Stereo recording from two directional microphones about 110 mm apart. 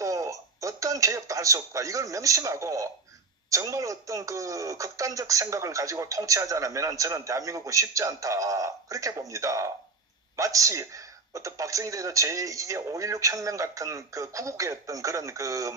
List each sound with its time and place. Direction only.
0.0 s a man's voice: 30° right (ahead or behind)